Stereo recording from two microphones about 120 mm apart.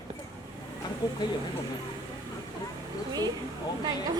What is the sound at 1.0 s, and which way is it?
Speech, 40° left (ahead or behind).